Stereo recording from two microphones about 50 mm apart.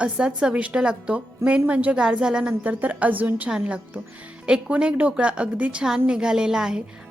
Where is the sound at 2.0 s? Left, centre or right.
Centre.